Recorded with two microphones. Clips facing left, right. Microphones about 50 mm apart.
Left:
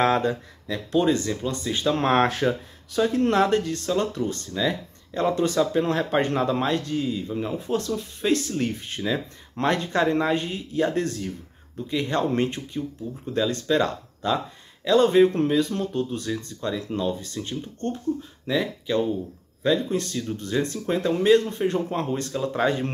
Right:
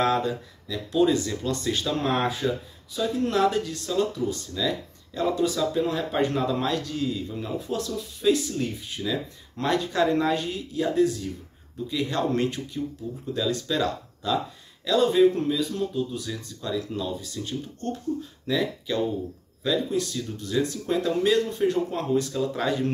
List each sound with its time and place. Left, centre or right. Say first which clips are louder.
0.0 s speech: left 2 dB; left
1.3 s speech: even; centre
2.0 s speech: left 7 dB; left
2.9 s speech: left 5 dB; left
3.3 s speech: left 3 dB; left
4.6 s speech: left 3 dB; left
5.3 s speech: left 2 dB; left
6.2 s speech: left 2 dB; left
8.3 s speech: even; left
9.0 s speech: left 2 dB; left
11.9 s speech: left 2 dB; left
13.3 s speech: left 4 dB; left
16.6 s speech: left 2 dB; left
19.6 s speech: left 2 dB; left